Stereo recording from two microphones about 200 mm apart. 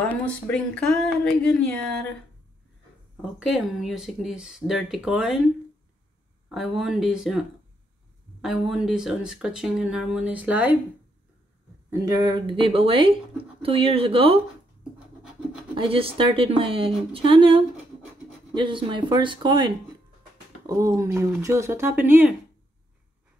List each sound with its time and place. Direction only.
0.0 s speech: 5° left (ahead or behind)
3.2 s speech: centre (ahead or behind)
6.5 s speech: centre (ahead or behind)
11.9 s speech: 15° right (ahead or behind)
15.7 s speech: 25° right (ahead or behind); by 22.3 s 10° right (ahead or behind)